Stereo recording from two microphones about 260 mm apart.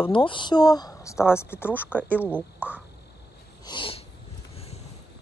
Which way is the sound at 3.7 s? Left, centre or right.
Centre.